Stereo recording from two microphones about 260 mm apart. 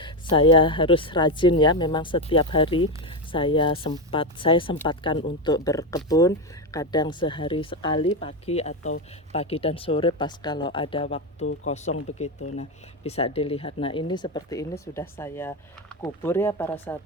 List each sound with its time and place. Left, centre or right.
0.0 s speech: centre